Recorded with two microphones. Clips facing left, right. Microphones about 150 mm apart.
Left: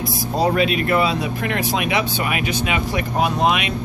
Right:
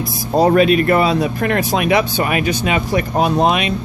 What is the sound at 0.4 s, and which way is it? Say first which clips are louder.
Speech: right 7 dB; 45° right (ahead or behind).